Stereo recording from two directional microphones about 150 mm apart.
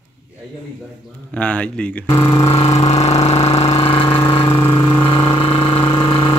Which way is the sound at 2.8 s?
45° left (ahead or behind).